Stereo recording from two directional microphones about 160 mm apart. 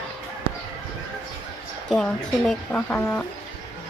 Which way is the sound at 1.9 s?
5° left (ahead or behind).